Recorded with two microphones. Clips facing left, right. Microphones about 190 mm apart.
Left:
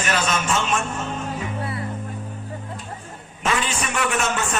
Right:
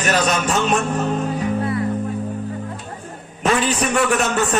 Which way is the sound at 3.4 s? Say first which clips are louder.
Right 6 dB; 35° right (ahead or behind).